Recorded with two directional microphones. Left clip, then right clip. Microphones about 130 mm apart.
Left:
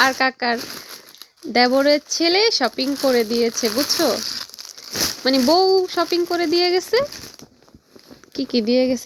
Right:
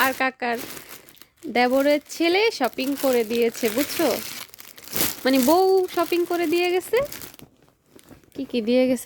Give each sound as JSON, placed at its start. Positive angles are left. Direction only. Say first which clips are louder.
{"t": 0.0, "sound": "speech", "louder": "left 5 dB", "side_deg": -10}
{"t": 4.1, "sound": "speech", "louder": "left 4 dB", "side_deg": -45}
{"t": 5.2, "sound": "speech", "louder": "left 2 dB", "side_deg": -25}
{"t": 8.3, "sound": "a sound", "louder": "left 6 dB", "side_deg": 15}
{"t": 8.6, "sound": "speech", "louder": "left 1 dB", "side_deg": -30}